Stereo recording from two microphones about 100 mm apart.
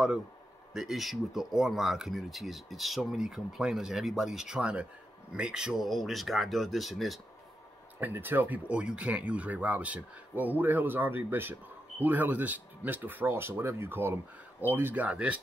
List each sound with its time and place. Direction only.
0.7 s speech: centre (ahead or behind)
8.0 s speech: 20° right (ahead or behind)